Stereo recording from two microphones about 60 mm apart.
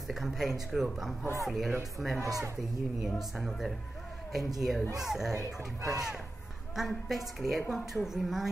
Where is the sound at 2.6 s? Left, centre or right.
Centre.